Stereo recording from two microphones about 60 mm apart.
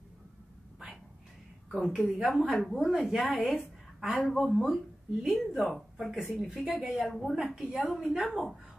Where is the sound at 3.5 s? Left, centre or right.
Centre.